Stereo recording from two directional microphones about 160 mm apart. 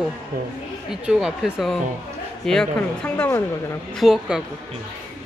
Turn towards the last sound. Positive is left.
turn(degrees=-5)  # may be behind; listen again after turning